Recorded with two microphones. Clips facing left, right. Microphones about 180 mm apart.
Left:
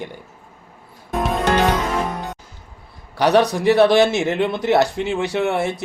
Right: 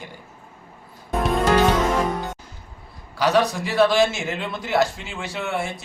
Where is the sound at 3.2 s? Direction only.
65° left (ahead or behind).